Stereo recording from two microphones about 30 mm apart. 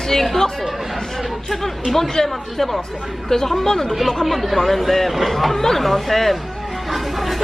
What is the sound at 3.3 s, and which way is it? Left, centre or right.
Speech, centre.